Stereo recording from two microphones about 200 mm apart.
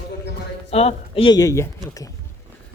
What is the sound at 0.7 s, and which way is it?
Speech, 30° left (ahead or behind).